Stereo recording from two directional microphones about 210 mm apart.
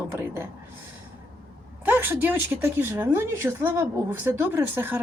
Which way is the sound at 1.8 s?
10° right (ahead or behind).